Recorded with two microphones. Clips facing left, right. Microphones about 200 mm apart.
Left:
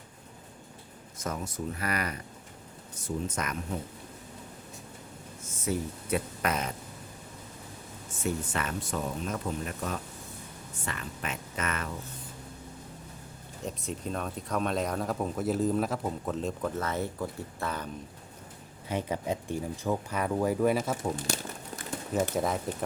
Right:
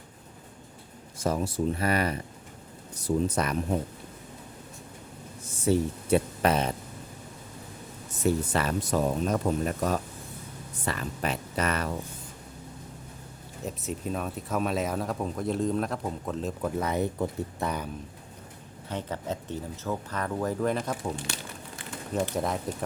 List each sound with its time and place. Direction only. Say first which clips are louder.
1.2 s speech: right 7 dB; 30° right (ahead or behind)
5.4 s speech: right 7 dB; 30° right (ahead or behind)
8.1 s speech: right 6 dB; 35° right (ahead or behind)
13.7 s speech: right 2 dB; 5° right (ahead or behind)
18.9 s speech: left 2 dB; 10° left (ahead or behind)
21.3 s speech: left 4 dB; 45° left (ahead or behind)
22.4 s speech: even; centre (ahead or behind)